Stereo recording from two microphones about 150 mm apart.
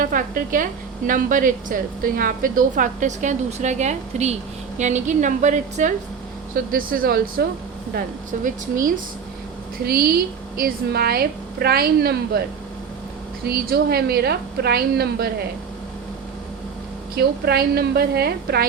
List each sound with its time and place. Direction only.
0.0 s a woman's voice: 65° right (ahead or behind)
6.7 s speech: 70° right (ahead or behind)
8.4 s a woman's voice: 65° right (ahead or behind)
9.8 s a woman's voice: 85° right
13.4 s a woman's voice: 90° right
17.2 s a woman's voice: 90° right